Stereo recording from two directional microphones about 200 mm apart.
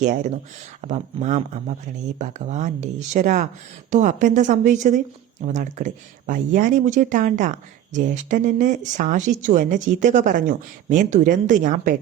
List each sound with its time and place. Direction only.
0.0 s speech: 40° right (ahead or behind)